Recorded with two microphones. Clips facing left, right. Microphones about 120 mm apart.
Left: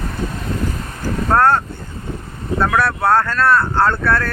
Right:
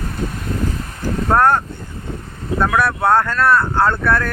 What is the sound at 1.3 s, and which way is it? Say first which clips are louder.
Speech: even; 15° right (ahead or behind).